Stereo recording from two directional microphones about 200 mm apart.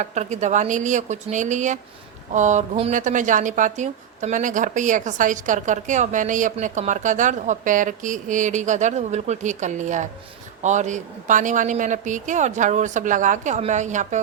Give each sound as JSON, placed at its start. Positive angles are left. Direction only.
{"t": 0.0, "sound": "speech", "side_deg": -35}